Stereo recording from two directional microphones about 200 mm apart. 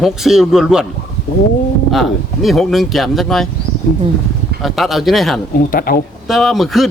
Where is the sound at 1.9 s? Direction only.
Centre (ahead or behind).